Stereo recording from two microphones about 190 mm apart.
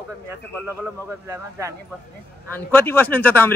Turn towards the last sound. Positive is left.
turn(degrees=10)  # may be behind; listen again after turning